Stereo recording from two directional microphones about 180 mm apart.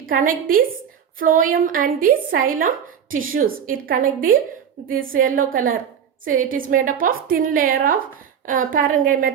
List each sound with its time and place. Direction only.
0.1 s a woman's voice: 50° right (ahead or behind)